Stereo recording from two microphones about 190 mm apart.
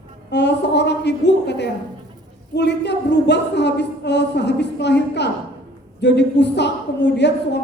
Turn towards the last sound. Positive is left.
turn(degrees=65)  # may be behind; listen again after turning